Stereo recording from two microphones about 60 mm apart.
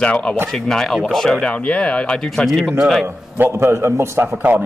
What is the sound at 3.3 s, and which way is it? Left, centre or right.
Speech, right.